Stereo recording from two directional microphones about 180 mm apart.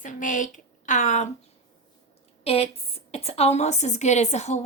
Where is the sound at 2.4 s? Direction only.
35° left (ahead or behind).